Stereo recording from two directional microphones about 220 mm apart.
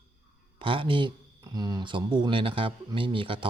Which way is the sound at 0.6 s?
25° right (ahead or behind).